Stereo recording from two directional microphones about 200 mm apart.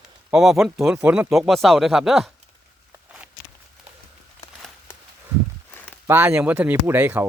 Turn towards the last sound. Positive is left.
turn(degrees=-10)  # may be behind; listen again after turning